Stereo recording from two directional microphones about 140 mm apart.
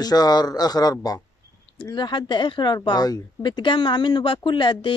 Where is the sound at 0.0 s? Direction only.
30° left (ahead or behind).